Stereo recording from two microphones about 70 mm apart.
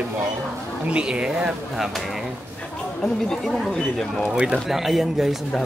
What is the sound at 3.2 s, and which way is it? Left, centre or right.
Speech, centre.